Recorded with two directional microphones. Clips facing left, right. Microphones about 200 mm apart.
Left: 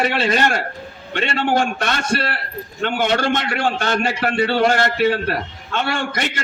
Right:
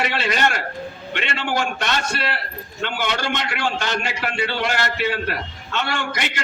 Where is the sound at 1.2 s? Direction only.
50° left (ahead or behind).